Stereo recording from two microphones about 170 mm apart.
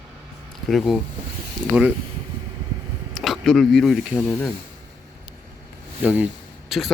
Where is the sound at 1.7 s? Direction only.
10° right (ahead or behind).